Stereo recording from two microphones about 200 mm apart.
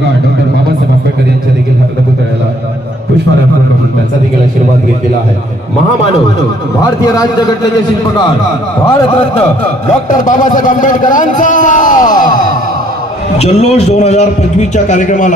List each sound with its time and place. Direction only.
6.8 s a man's voice: 20° left (ahead or behind)
10.0 s a man's voice: 40° left (ahead or behind)
13.4 s a man's voice: 35° left (ahead or behind)